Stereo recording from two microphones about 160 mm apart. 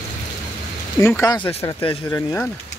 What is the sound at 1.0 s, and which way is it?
Speech, 15° left (ahead or behind).